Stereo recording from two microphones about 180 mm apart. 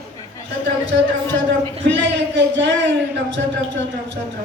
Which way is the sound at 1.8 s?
80° right.